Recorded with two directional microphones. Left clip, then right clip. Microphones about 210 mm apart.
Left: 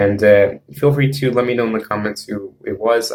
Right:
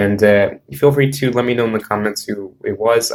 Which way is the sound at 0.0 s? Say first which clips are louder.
Left 1 dB; 35° right (ahead or behind).